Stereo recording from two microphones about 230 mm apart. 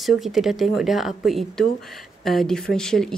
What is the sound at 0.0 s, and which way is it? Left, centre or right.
Speech, centre.